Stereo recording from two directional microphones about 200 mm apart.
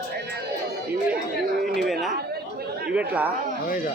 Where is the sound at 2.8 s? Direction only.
5° right (ahead or behind).